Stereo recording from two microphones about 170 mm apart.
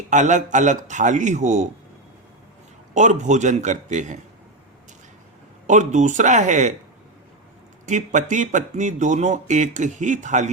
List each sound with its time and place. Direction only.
0.1 s speech: 45° right (ahead or behind)
2.9 s speech: 45° right (ahead or behind)
5.6 s speech: 45° right (ahead or behind)
7.9 s speech: 45° right (ahead or behind)